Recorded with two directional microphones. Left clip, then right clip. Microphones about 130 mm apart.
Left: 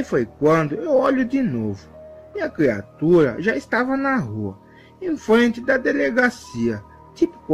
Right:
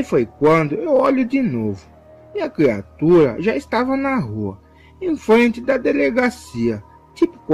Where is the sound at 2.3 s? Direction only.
20° right (ahead or behind).